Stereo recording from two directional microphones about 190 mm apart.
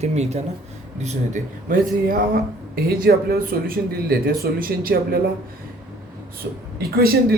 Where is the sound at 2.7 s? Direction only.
50° right (ahead or behind).